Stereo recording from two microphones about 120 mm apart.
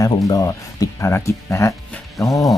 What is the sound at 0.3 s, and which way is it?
Speech, 30° left (ahead or behind).